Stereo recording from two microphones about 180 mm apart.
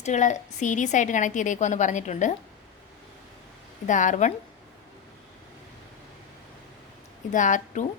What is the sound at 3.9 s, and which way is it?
Speech, 45° left (ahead or behind).